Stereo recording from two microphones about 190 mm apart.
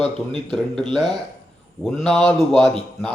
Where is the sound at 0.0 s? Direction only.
25° right (ahead or behind).